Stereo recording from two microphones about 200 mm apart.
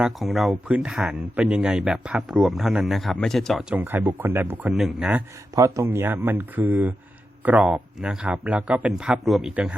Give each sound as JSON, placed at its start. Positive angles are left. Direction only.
{"t": 0.0, "sound": "a man's voice", "side_deg": 0}
{"t": 5.5, "sound": "a man's voice", "side_deg": -15}